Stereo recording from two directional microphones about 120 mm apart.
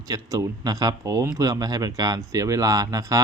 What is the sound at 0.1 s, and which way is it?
Speech, 30° right (ahead or behind).